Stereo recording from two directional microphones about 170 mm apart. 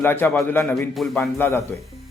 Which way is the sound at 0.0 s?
10° left (ahead or behind).